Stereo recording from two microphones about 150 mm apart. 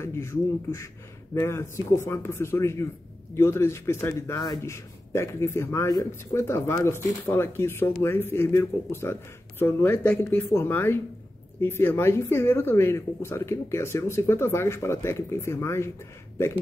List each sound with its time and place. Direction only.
0.0 s speech: 20° left (ahead or behind)